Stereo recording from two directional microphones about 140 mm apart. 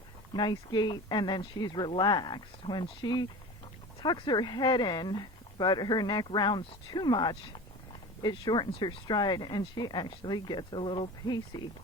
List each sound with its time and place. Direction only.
0.3 s speech: 30° left (ahead or behind)